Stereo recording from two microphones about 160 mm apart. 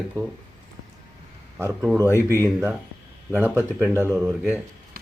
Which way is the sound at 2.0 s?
15° left (ahead or behind).